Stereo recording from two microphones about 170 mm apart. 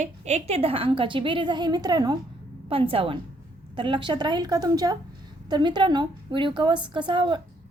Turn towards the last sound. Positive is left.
turn(degrees=-25)  # may be behind; listen again after turning